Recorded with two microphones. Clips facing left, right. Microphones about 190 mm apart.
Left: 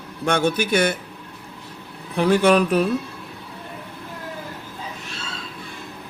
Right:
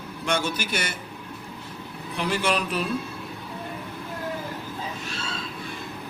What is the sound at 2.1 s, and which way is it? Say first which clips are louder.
Speech: left 9 dB; 50° left (ahead or behind).